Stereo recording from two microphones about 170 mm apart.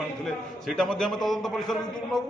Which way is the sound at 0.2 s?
5° left (ahead or behind).